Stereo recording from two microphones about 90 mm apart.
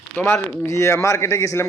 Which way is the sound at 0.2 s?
30° left (ahead or behind).